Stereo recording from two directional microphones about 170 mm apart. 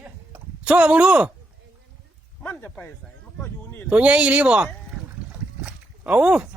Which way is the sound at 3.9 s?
5° right (ahead or behind).